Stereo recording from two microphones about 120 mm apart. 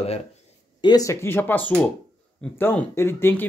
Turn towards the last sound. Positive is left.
turn(degrees=20)  # may be behind; listen again after turning